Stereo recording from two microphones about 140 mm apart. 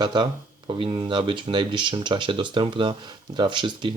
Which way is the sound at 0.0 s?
35° right (ahead or behind).